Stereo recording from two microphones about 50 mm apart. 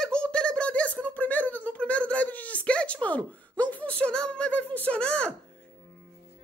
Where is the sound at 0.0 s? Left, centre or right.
Centre.